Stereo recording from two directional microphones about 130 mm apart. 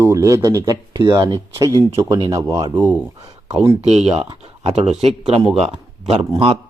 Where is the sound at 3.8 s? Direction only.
55° right (ahead or behind).